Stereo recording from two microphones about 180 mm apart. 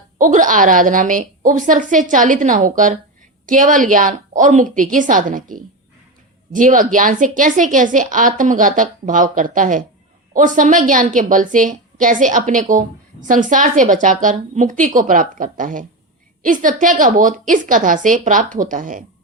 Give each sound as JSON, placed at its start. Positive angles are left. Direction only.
{"t": 0.2, "sound": "a woman's voice", "side_deg": -45}